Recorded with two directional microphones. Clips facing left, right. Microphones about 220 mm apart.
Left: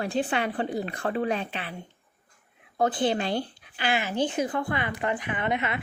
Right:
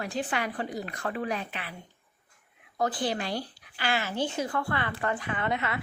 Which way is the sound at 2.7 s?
25° left (ahead or behind).